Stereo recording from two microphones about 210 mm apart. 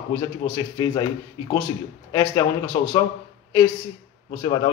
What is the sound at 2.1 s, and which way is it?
Speech, 15° left (ahead or behind).